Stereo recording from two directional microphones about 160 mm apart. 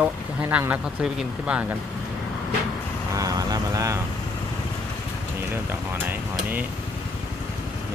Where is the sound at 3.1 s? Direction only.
20° right (ahead or behind).